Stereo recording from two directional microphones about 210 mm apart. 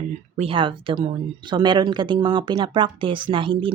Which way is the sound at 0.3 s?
25° right (ahead or behind).